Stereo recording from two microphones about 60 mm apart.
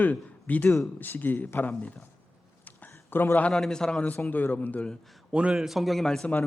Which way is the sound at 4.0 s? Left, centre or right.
Left.